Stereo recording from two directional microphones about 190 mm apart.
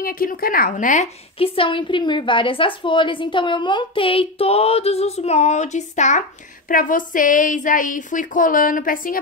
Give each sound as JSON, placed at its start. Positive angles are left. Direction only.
{"t": 0.0, "sound": "a woman's voice", "side_deg": 50}
{"t": 1.4, "sound": "a woman's voice", "side_deg": 30}